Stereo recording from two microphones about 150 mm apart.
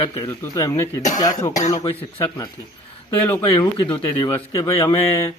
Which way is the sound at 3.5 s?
35° left (ahead or behind).